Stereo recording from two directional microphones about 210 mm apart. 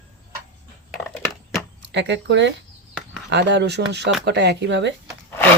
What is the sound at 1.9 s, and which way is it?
Speech, 55° right (ahead or behind).